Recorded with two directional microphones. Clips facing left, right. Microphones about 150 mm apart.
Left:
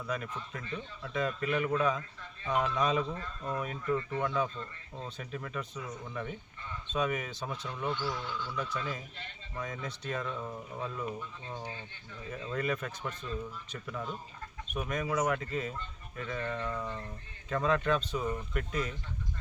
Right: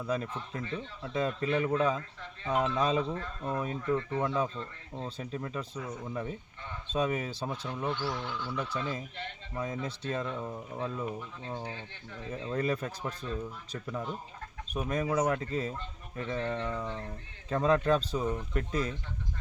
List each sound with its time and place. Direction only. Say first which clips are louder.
0.1 s speech: right 4 dB; 30° right (ahead or behind)
7.9 s speech: even; 65° right (ahead or behind)
8.5 s speech: right 3 dB; 30° right (ahead or behind)
12.3 s speech: right 2 dB; 25° right (ahead or behind)